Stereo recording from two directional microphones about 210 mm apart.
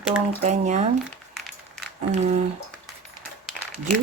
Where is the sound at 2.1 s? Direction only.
30° right (ahead or behind).